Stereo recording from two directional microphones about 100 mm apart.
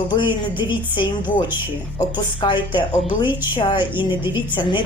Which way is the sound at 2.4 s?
50° left (ahead or behind).